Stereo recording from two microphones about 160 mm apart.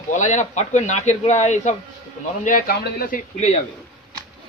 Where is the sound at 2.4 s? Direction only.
65° left (ahead or behind).